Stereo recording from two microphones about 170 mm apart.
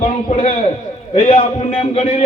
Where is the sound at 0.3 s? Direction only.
40° left (ahead or behind).